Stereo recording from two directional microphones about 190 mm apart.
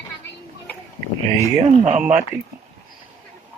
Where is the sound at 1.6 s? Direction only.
35° right (ahead or behind).